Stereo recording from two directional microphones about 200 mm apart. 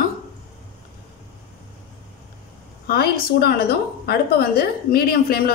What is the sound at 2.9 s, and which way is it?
A woman's voice, 50° left (ahead or behind).